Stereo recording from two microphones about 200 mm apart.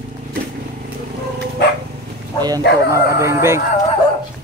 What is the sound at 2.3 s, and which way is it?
Speech, 20° right (ahead or behind).